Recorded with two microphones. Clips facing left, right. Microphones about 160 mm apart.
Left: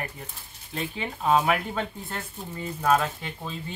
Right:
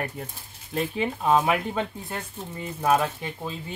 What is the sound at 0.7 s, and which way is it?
Speech, 40° right (ahead or behind).